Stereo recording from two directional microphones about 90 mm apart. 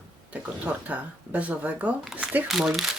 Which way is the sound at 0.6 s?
15° right (ahead or behind).